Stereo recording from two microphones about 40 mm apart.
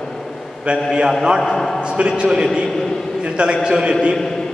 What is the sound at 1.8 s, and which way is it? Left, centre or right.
A man's voice, right.